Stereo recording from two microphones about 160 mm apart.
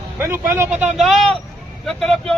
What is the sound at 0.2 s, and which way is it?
Speech, 15° right (ahead or behind).